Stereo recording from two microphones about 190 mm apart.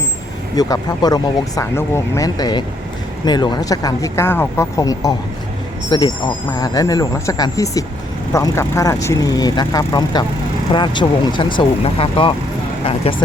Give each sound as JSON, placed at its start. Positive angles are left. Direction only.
{"t": 0.5, "sound": "speech", "side_deg": 20}